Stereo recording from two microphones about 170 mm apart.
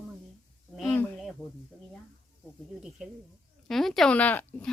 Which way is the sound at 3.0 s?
5° right (ahead or behind).